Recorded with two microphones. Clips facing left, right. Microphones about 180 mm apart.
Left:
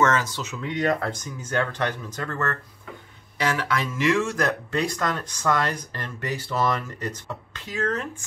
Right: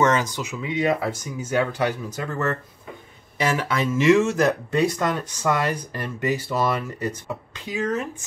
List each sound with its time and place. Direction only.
0.0 s speech: 15° right (ahead or behind)
3.3 s speech: 25° right (ahead or behind)
4.6 s speech: 10° right (ahead or behind)